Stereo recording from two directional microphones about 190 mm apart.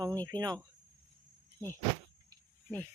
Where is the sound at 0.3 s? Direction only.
20° right (ahead or behind).